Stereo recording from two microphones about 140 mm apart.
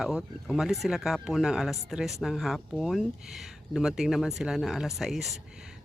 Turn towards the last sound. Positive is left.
turn(degrees=0)  # may be behind; listen again after turning